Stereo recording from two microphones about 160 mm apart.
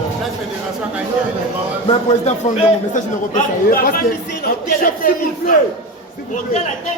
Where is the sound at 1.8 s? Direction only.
40° left (ahead or behind).